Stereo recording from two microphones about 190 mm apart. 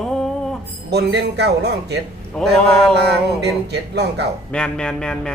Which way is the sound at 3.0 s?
60° right (ahead or behind).